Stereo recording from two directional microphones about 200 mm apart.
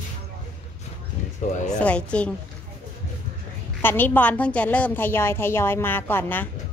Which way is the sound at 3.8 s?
10° left (ahead or behind).